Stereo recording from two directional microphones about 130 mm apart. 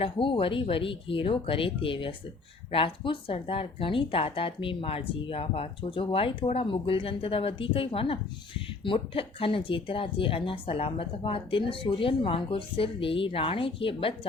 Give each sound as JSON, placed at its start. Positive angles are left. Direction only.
{"t": 0.0, "sound": "speech", "side_deg": 40}